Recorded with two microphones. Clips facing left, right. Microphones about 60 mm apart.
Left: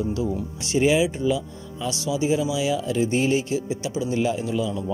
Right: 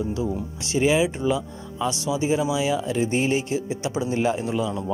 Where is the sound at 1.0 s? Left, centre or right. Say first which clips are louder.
Even; right.